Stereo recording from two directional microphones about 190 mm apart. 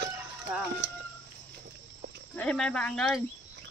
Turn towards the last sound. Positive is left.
turn(degrees=0)  # may be behind; listen again after turning